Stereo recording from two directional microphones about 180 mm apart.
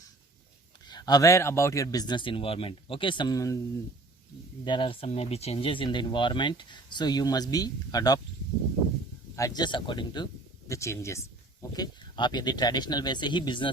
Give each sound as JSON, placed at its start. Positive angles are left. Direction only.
{"t": 0.9, "sound": "speech", "side_deg": 20}
{"t": 4.6, "sound": "speech", "side_deg": 25}
{"t": 9.3, "sound": "speech", "side_deg": 20}